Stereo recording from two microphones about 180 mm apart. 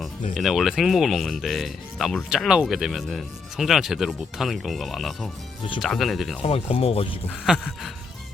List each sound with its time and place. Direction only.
0.3 s speech: centre (ahead or behind)
6.4 s speech: 30° left (ahead or behind)
7.3 s speech: 5° right (ahead or behind)